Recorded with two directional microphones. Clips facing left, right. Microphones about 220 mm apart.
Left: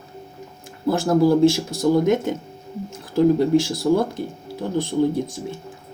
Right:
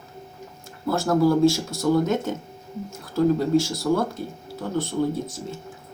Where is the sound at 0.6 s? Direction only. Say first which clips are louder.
Left 4 dB; 20° left (ahead or behind).